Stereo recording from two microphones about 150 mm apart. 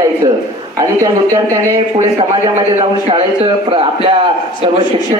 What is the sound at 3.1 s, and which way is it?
Speech, 40° right (ahead or behind).